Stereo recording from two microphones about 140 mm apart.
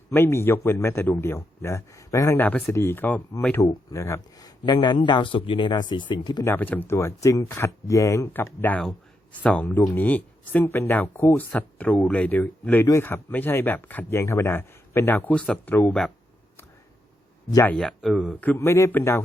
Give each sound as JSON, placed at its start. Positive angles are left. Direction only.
{"t": 0.1, "sound": "speech", "side_deg": 15}
{"t": 6.5, "sound": "speech", "side_deg": 10}
{"t": 17.7, "sound": "speech", "side_deg": 5}
{"t": 18.3, "sound": "speech", "side_deg": 10}